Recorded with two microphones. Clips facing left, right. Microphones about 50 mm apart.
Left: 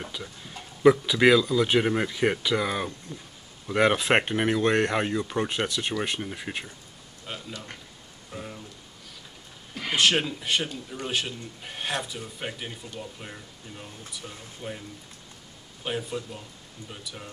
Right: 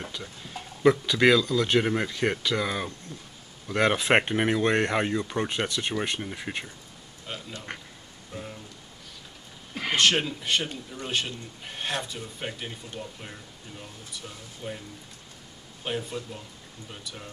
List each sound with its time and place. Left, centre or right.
0.0 s speech: centre
7.5 s a man's voice: right
8.3 s rain: centre
9.9 s speech: centre
15.8 s speech: centre